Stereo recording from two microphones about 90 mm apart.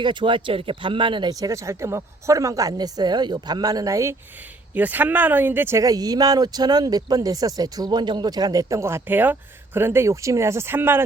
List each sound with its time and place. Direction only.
0.0 s speech: 60° right (ahead or behind)
1.3 s speech: 40° right (ahead or behind)
4.7 s speech: 20° right (ahead or behind)
5.8 s speech: 45° right (ahead or behind)
9.0 s speech: 20° right (ahead or behind)